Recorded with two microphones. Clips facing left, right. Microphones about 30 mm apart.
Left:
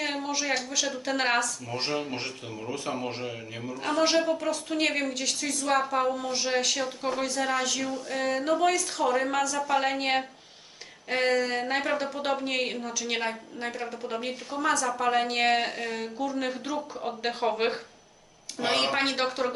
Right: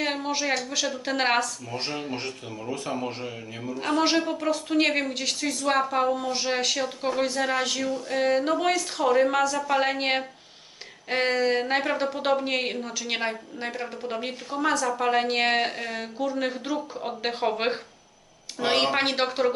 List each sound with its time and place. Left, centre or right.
0.0 s a sound: centre
0.7 s a woman's voice: centre
1.7 s a man's voice: centre
4.3 s a woman's voice: centre
7.8 s a woman's voice: centre